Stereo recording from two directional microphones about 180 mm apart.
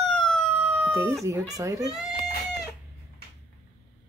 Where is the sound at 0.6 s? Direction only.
10° right (ahead or behind).